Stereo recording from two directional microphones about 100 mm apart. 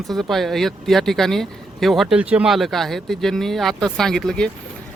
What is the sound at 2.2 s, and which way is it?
Speech, 15° right (ahead or behind).